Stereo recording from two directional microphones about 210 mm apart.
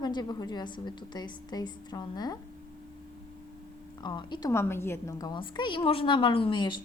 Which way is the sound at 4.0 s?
20° left (ahead or behind).